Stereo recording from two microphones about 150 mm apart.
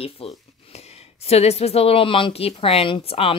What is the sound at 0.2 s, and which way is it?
Speech, 40° left (ahead or behind).